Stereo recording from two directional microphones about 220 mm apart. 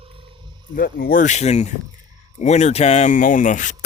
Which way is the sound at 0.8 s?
40° left (ahead or behind).